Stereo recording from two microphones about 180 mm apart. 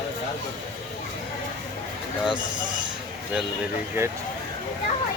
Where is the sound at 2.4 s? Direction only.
25° right (ahead or behind).